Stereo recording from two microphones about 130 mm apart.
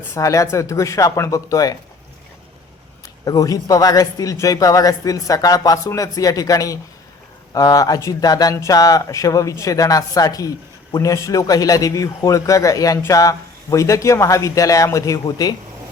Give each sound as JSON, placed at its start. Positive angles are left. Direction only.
{"t": 0.1, "sound": "speech", "side_deg": 25}
{"t": 3.2, "sound": "speech", "side_deg": 25}